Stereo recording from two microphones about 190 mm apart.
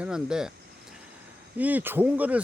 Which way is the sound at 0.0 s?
5° right (ahead or behind).